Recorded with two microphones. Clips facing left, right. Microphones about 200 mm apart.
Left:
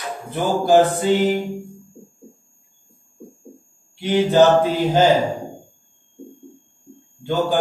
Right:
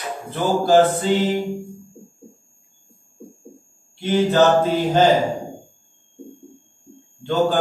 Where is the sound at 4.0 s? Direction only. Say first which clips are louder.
Left 2 dB; 15° left (ahead or behind).